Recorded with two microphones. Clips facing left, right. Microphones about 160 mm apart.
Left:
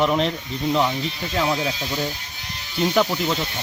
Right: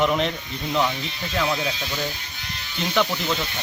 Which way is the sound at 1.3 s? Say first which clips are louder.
Left 1 dB; 20° left (ahead or behind).